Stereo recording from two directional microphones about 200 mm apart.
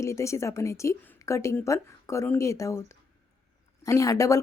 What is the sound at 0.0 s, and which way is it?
Speech, 15° left (ahead or behind).